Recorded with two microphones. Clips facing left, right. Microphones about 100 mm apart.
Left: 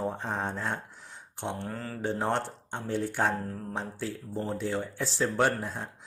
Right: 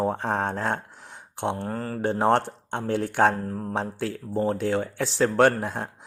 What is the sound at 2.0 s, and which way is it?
Speech, 65° right (ahead or behind).